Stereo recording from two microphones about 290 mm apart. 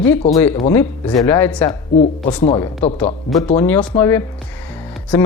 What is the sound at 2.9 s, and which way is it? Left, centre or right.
Speech, centre.